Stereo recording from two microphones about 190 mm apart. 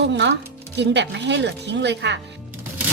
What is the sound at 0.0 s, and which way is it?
A woman's voice, 65° right (ahead or behind).